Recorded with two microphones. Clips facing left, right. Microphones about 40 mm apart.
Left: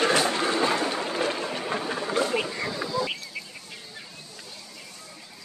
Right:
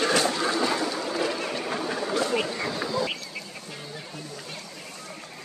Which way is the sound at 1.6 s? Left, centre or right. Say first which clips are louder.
Even; centre.